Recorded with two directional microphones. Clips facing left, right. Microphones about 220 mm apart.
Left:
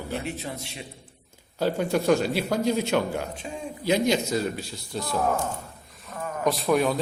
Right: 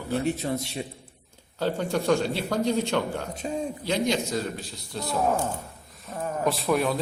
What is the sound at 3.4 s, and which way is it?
Speech, 40° right (ahead or behind).